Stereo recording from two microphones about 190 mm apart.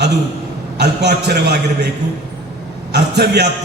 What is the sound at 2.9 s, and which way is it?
Speech, 60° right (ahead or behind).